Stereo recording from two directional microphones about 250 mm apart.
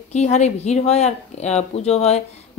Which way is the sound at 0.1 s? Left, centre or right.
Left.